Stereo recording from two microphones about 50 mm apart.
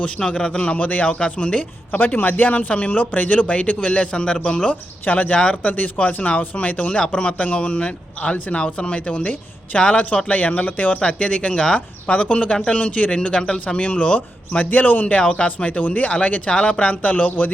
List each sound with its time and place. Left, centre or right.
0.0 s a man's voice: centre
2.0 s a man's voice: left
5.4 s a man's voice: centre
5.7 s a man's voice: left
11.0 s a man's voice: centre
14.5 s a man's voice: left
15.0 s a man's voice: centre
15.4 s a man's voice: left